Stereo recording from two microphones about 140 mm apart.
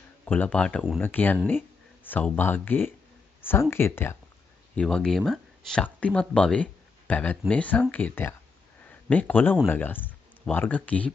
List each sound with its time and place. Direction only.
0.2 s speech: 10° left (ahead or behind)
4.7 s speech: 5° left (ahead or behind)